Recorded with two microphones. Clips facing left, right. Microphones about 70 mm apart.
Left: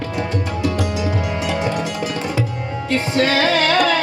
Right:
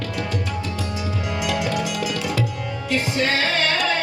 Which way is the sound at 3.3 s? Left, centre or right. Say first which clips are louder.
Left 5 dB; left.